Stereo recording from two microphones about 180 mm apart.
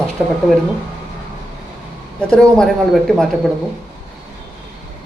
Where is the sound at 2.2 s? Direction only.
5° left (ahead or behind).